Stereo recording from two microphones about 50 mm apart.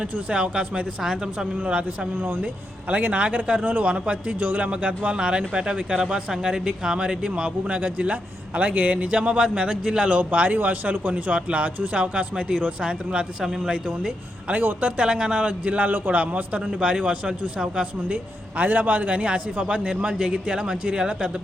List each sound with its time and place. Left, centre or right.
0.0 s speech: right
1.0 s speech: centre
1.5 s speech: right
2.1 s speech: right
2.9 s speech: right
14.6 s speech: right
18.5 s speech: right